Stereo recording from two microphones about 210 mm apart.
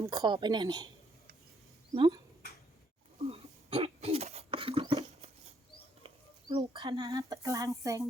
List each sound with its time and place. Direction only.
0.0 s speech: 15° right (ahead or behind)
2.0 s speech: 20° right (ahead or behind)
3.2 s a sound: 30° right (ahead or behind)
6.5 s speech: 25° right (ahead or behind)